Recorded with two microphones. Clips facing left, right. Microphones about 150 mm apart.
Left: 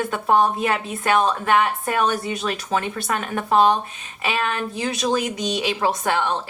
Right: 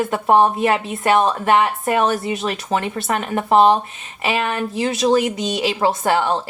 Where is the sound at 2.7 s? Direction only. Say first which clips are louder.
Right 3 dB; 35° right (ahead or behind).